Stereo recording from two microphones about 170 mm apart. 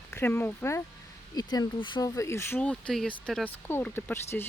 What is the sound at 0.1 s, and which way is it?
Speech, 15° left (ahead or behind).